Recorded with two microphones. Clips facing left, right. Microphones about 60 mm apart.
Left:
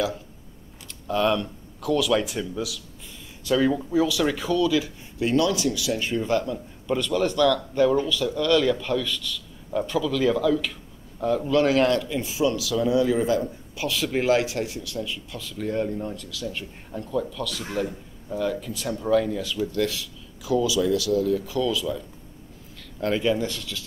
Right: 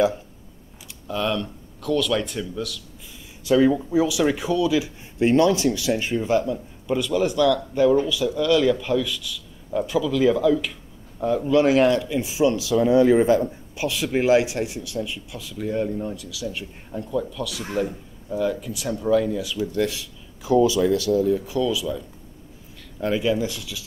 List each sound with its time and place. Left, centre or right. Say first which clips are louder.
1.0 s speech: left 2 dB; centre
3.4 s speech: right 4 dB; centre
5.2 s speech: right 4 dB; right
5.9 s speech: right 2 dB; centre
13.7 s speech: right 2 dB; centre
19.7 s speech: right 2 dB; centre
20.5 s speech: right 4 dB; right; by 21.8 s centre
22.9 s speech: right 1 dB; centre